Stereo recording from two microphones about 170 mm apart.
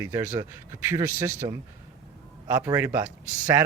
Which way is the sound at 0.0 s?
15° right (ahead or behind).